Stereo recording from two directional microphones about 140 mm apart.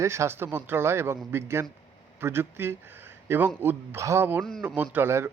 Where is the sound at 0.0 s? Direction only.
20° right (ahead or behind).